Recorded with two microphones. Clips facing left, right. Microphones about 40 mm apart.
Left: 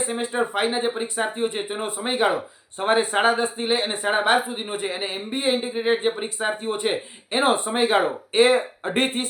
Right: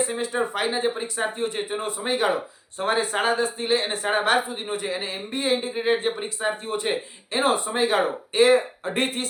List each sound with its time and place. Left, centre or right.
0.1 s speech: left
2.7 s speech: left